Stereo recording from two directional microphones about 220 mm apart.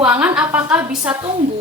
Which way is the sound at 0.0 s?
5° right (ahead or behind).